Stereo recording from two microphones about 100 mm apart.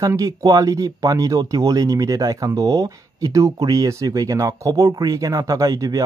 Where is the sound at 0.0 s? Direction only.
35° right (ahead or behind).